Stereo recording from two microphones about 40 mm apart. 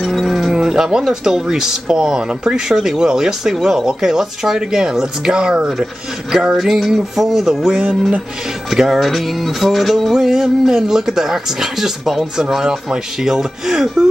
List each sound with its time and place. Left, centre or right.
0.0 s a sound: centre
0.5 s speech: centre
8.6 s music: centre
10.1 s speech: centre